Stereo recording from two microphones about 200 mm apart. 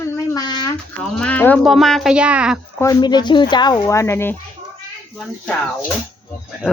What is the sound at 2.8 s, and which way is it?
Speech, 15° left (ahead or behind).